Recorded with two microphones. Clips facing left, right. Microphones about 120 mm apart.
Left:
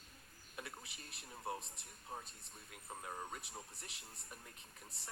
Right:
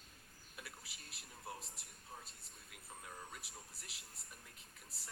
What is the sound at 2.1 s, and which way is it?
Speech, 50° left (ahead or behind).